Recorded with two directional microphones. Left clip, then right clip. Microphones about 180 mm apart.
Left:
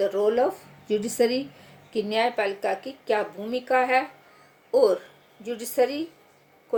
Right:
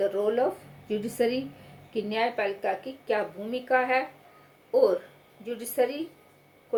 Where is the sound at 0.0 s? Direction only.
55° left (ahead or behind).